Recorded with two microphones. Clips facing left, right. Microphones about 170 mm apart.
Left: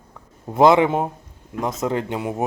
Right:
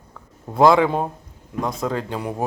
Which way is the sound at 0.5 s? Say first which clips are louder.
Left 1 dB; 20° left (ahead or behind).